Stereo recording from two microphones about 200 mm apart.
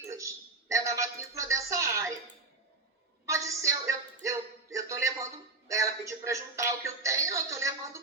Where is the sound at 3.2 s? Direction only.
15° right (ahead or behind).